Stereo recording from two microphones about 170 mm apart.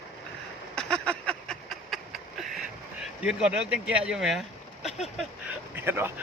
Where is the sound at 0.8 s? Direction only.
5° left (ahead or behind).